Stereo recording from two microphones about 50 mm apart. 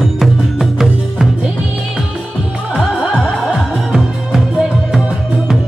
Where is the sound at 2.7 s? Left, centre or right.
Centre.